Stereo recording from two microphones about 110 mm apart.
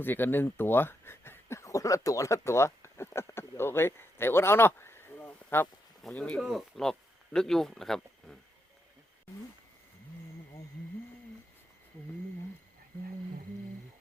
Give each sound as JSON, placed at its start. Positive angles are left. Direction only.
{"t": 0.0, "sound": "speech", "side_deg": 20}
{"t": 6.0, "sound": "speech", "side_deg": 10}